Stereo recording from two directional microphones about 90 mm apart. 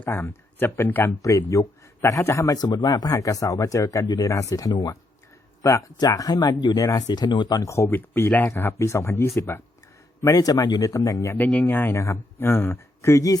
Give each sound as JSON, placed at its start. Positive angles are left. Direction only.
{"t": 0.0, "sound": "speech", "side_deg": 25}
{"t": 1.2, "sound": "speech", "side_deg": 35}
{"t": 2.6, "sound": "speech", "side_deg": 50}
{"t": 7.6, "sound": "speech", "side_deg": 30}
{"t": 10.3, "sound": "speech", "side_deg": 45}
{"t": 11.3, "sound": "speech", "side_deg": 15}